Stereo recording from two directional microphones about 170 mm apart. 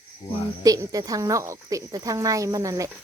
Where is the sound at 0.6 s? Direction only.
20° right (ahead or behind).